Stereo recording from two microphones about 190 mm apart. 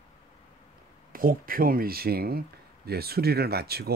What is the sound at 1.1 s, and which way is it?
Speech, 50° right (ahead or behind).